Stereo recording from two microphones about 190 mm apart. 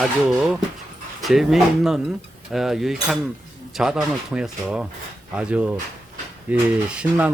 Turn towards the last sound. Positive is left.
turn(degrees=-5)  # may be behind; listen again after turning